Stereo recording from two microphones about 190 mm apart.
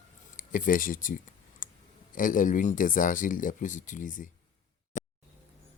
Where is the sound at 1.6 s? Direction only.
45° left (ahead or behind).